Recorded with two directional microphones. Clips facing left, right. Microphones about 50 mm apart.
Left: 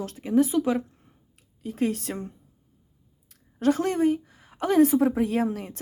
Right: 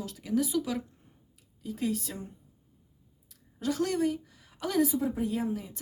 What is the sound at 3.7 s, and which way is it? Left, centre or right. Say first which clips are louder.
A woman's voice: left 6 dB; left.